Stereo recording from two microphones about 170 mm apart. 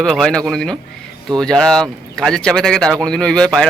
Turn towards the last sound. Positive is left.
turn(degrees=5)  # may be behind; listen again after turning